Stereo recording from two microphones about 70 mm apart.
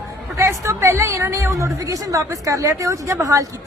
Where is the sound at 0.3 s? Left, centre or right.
Right.